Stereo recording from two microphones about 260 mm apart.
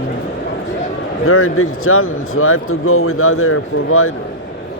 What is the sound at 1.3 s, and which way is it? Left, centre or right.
Speech, left.